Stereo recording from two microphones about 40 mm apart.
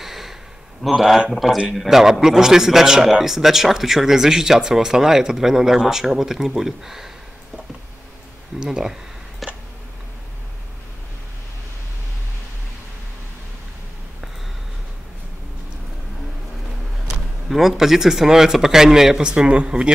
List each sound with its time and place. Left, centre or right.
0.0 s a sound: centre
0.8 s a man's voice: centre
8.5 s a man's voice: centre
9.4 s a sound: centre
17.5 s a man's voice: centre
19.2 s speech: right